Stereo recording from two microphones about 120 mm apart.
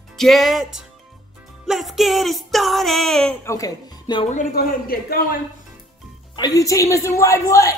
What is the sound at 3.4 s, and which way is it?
Speech, 30° left (ahead or behind).